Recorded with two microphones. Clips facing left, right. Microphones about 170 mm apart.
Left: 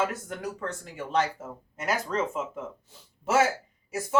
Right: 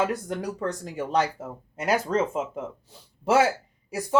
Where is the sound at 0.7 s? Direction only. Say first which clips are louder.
Right 3 dB; 40° right (ahead or behind).